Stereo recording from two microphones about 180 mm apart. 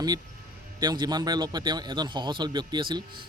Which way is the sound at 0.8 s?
25° right (ahead or behind).